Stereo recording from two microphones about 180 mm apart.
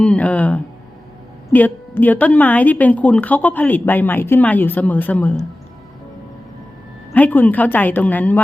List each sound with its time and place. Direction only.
0.0 s a woman's voice: 5° left (ahead or behind)
7.1 s a woman's voice: 10° left (ahead or behind)